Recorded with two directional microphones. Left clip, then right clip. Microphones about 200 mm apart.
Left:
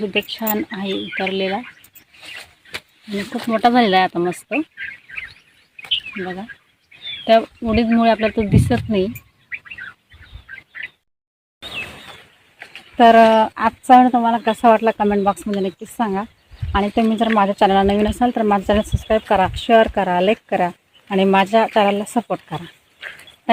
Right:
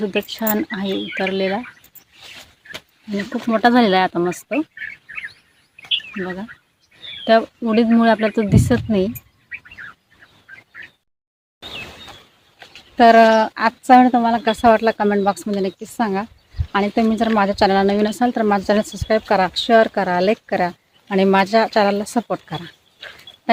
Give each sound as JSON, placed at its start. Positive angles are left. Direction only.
{"t": 0.0, "sound": "speech", "side_deg": -15}
{"t": 3.5, "sound": "speech", "side_deg": -10}
{"t": 6.2, "sound": "speech", "side_deg": -10}
{"t": 12.5, "sound": "speech", "side_deg": 10}